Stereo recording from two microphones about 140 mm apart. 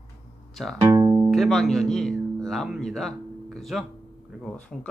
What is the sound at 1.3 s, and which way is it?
Speech, centre (ahead or behind).